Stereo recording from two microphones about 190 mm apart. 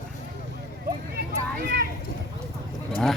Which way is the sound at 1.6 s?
55° right (ahead or behind).